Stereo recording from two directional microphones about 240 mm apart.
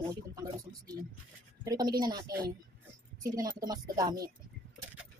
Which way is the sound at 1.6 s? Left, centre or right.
Centre.